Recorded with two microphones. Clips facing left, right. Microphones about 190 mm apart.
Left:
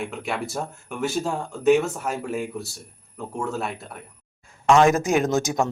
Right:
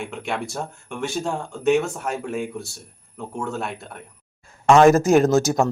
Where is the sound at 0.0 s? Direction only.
Centre (ahead or behind).